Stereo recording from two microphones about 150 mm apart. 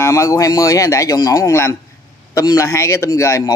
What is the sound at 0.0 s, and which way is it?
Speech, 20° left (ahead or behind).